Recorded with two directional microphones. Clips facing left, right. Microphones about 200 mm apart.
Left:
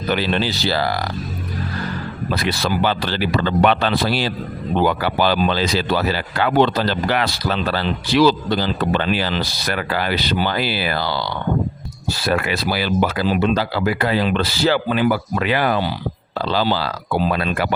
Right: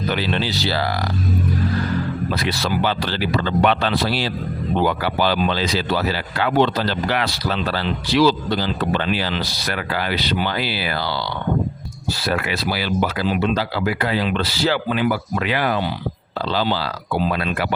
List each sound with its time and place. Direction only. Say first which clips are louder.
0.1 s speech: left 5 dB; 50° left (ahead or behind)
2.3 s speech: left 4 dB; 50° left (ahead or behind)
12.2 s speech: left 3 dB; 50° left (ahead or behind)